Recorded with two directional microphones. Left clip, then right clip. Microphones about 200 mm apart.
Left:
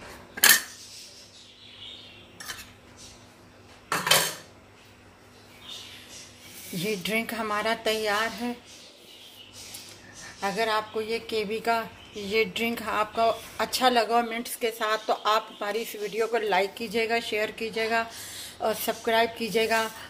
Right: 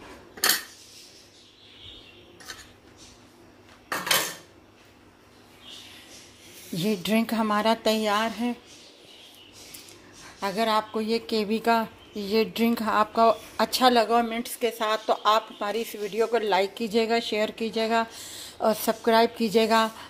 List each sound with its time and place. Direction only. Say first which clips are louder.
6.8 s a woman's voice: right 2 dB; 35° right (ahead or behind)
10.4 s a woman's voice: right 2 dB; 35° right (ahead or behind)